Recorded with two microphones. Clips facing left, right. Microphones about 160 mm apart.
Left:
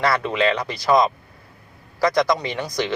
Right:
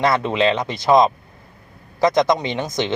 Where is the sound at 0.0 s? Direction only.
20° right (ahead or behind).